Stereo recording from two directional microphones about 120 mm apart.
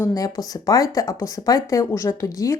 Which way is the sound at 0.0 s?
30° left (ahead or behind).